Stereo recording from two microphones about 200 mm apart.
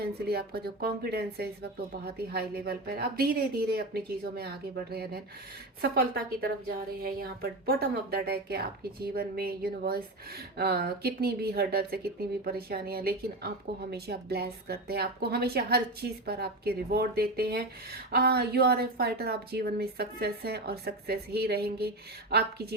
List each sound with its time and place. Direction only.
0.0 s speech: 50° right (ahead or behind)